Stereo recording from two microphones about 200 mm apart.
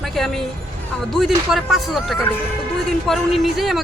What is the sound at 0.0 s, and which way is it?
Speech, centre (ahead or behind).